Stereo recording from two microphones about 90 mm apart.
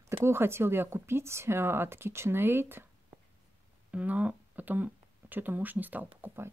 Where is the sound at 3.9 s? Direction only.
15° right (ahead or behind).